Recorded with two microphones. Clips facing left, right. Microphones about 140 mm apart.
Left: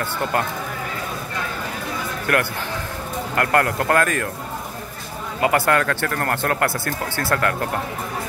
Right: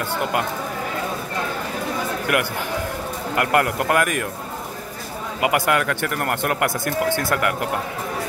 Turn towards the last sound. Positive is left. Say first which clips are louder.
# even
turn(degrees=-15)  # may be behind; listen again after turning